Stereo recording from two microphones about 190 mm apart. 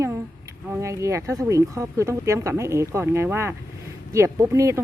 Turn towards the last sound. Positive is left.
turn(degrees=-15)  # may be behind; listen again after turning